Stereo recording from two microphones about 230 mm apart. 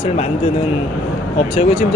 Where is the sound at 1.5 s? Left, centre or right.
Left.